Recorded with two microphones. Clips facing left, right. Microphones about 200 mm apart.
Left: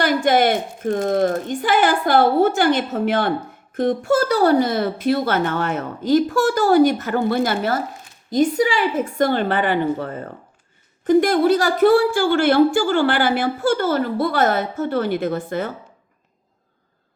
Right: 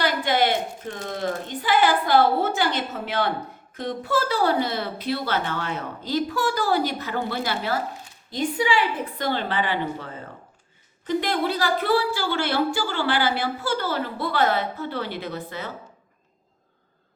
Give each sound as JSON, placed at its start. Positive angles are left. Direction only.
{"t": 0.0, "sound": "a woman's voice", "side_deg": 45}